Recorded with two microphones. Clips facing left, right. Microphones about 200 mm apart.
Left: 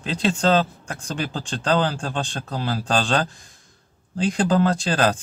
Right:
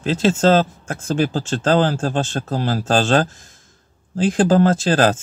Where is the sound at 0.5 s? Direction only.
45° right (ahead or behind).